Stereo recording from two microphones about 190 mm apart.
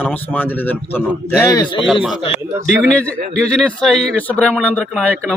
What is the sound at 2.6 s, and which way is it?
A man's voice, 5° left (ahead or behind).